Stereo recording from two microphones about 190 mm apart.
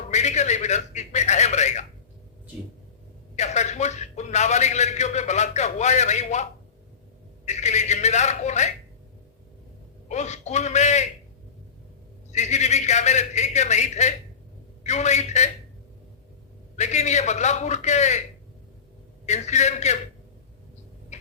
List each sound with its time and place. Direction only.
0.1 s a man's voice: 35° left (ahead or behind)
3.3 s a man's voice: 35° left (ahead or behind)
10.1 s a man's voice: 35° left (ahead or behind)
12.3 s a man's voice: 35° left (ahead or behind)
16.7 s a man's voice: 40° left (ahead or behind)
19.2 s a man's voice: 35° left (ahead or behind)
21.1 s a sound: 35° left (ahead or behind)